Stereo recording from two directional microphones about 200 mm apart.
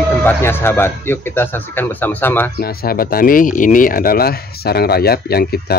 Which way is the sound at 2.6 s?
50° left (ahead or behind).